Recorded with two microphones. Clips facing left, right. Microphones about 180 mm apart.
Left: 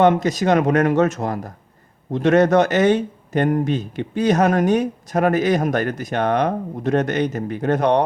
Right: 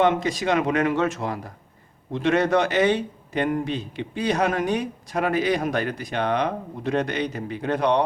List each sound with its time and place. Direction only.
0.0 s speech: 45° left (ahead or behind)